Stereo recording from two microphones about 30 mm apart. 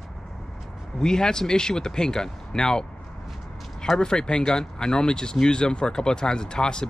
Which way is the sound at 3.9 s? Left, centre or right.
Left.